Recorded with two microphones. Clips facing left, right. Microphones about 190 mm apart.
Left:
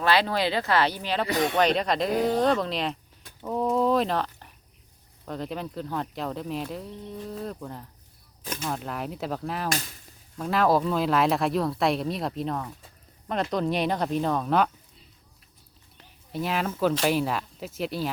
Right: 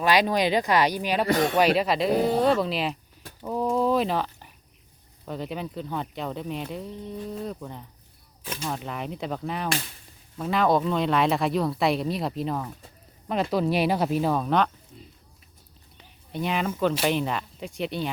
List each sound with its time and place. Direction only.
0.0 s speech: 15° right (ahead or behind)
1.3 s speech: 45° right (ahead or behind)
1.5 s speech: 5° right (ahead or behind)
16.0 s a sound: centre (ahead or behind)
17.1 s speech: 5° left (ahead or behind)